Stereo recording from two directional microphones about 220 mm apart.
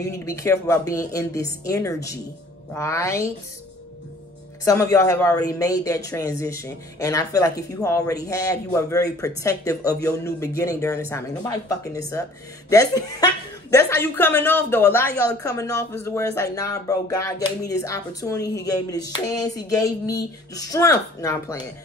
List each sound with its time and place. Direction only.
0.1 s speech: 15° left (ahead or behind)
4.6 s speech: 15° left (ahead or behind)